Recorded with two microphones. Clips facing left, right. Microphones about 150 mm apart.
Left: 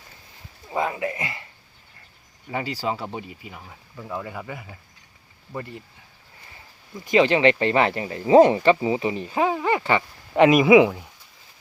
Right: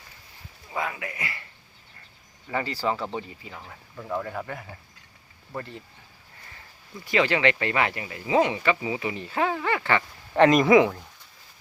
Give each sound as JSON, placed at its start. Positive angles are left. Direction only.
{"t": 0.7, "sound": "speech", "side_deg": 25}
{"t": 2.5, "sound": "speech", "side_deg": 10}
{"t": 6.9, "sound": "speech", "side_deg": 20}